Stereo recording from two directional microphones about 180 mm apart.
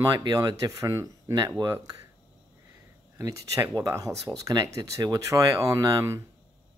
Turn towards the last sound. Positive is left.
turn(degrees=-15)  # may be behind; listen again after turning